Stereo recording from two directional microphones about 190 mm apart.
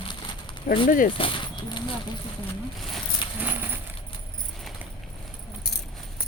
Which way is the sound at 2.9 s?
10° right (ahead or behind).